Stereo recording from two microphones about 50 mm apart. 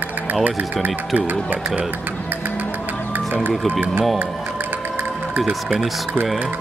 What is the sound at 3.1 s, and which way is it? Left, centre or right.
Music, right.